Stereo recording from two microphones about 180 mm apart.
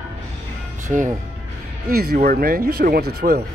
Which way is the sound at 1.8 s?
60° right (ahead or behind).